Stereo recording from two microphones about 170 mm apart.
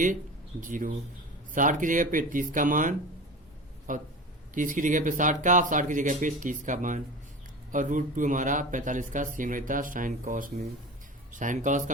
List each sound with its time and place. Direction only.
0.6 s speech: 50° right (ahead or behind)